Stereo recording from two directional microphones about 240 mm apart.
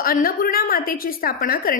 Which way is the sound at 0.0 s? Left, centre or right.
Left.